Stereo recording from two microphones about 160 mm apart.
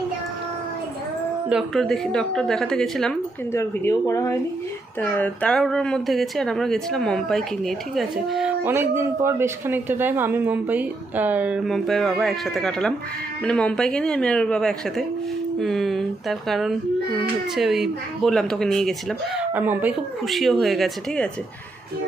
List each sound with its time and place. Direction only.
1.5 s speech: centre (ahead or behind)
3.5 s speech: 20° left (ahead or behind); by 18.9 s centre (ahead or behind)
19.4 s speech: 10° right (ahead or behind)
20.2 s speech: centre (ahead or behind)